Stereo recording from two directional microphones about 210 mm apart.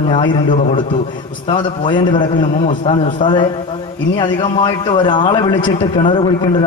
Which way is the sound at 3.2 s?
20° left (ahead or behind).